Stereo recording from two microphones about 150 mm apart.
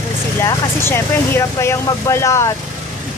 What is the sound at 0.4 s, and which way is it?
Speech, 15° left (ahead or behind).